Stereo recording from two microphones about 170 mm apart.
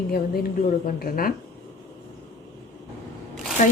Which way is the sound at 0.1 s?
60° left (ahead or behind).